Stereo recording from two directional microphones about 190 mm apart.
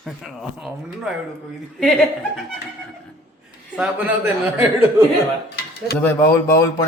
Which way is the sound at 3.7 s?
5° right (ahead or behind).